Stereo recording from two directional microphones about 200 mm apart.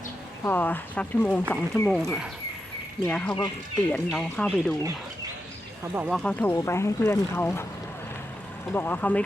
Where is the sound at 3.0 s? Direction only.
15° left (ahead or behind).